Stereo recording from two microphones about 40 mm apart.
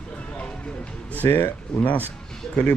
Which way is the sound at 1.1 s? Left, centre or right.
Left.